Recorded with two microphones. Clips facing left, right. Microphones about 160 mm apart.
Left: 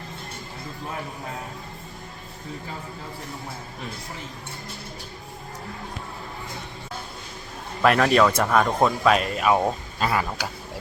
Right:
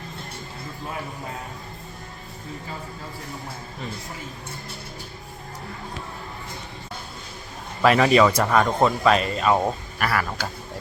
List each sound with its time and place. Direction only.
7.8 s speech: centre (ahead or behind)
10.0 s speech: 20° left (ahead or behind)